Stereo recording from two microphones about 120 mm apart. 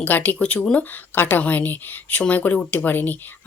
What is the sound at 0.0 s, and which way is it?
Speech, 15° left (ahead or behind).